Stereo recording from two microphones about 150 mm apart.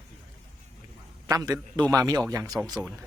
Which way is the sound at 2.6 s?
15° right (ahead or behind).